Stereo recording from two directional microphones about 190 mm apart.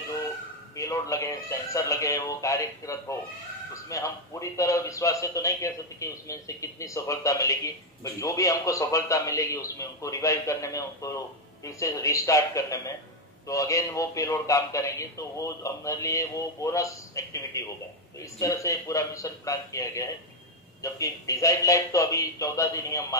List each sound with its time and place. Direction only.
0.7 s a man's voice: 15° left (ahead or behind)